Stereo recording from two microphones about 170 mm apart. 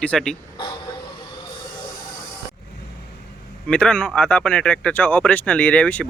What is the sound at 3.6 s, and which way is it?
Speech, 5° left (ahead or behind).